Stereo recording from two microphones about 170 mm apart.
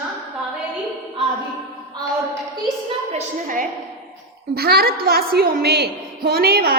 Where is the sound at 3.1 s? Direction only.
50° right (ahead or behind).